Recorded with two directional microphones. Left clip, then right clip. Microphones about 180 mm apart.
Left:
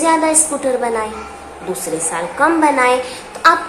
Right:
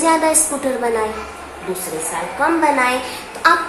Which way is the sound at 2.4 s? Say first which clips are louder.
Left 3 dB; 20° left (ahead or behind).